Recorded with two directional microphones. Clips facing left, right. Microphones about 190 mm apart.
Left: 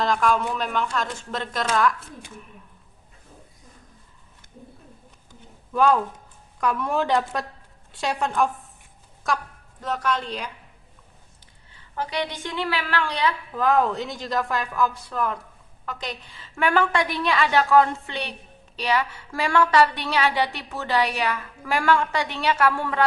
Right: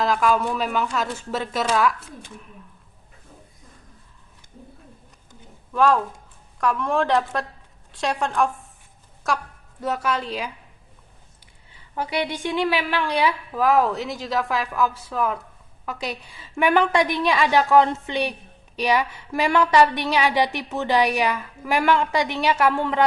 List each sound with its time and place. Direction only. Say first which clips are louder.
0.0 s a woman's voice: right 1 dB; 5° right (ahead or behind)
5.7 s a woman's voice: right 1 dB; centre (ahead or behind)
11.7 s a woman's voice: right 2 dB; 10° right (ahead or behind)